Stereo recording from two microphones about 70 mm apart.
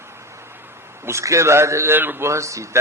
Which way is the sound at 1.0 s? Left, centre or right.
Right.